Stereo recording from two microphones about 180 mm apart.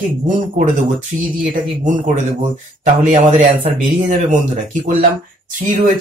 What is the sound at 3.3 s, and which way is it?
Speech, 30° right (ahead or behind).